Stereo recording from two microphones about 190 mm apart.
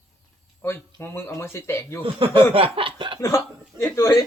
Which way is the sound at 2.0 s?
25° right (ahead or behind).